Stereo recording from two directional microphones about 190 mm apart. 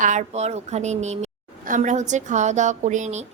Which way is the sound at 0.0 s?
40° right (ahead or behind).